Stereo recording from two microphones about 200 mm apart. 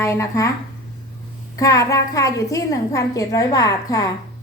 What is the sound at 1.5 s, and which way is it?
A woman's voice, 15° left (ahead or behind).